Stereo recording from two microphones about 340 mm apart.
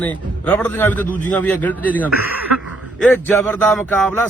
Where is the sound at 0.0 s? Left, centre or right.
Centre.